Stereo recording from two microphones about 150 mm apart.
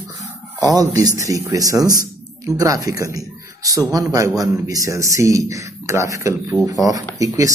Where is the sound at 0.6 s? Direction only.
25° right (ahead or behind).